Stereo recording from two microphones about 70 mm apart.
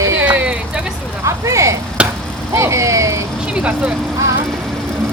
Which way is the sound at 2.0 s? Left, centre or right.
Centre.